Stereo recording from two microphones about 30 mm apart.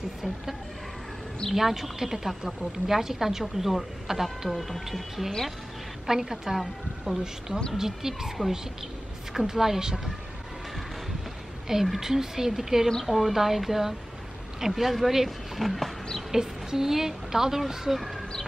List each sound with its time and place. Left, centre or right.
1.5 s a woman's voice: centre
4.6 s speech: centre
6.0 s a woman's voice: centre
8.4 s speech: right
9.3 s a woman's voice: centre
11.6 s a woman's voice: centre
13.0 s a woman's voice: centre
16.3 s a woman's voice: centre